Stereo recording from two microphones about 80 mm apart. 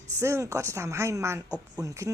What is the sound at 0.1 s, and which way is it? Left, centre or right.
Speech, right.